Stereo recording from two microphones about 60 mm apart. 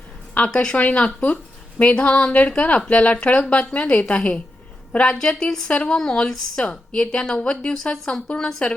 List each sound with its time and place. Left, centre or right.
0.3 s a woman's voice: centre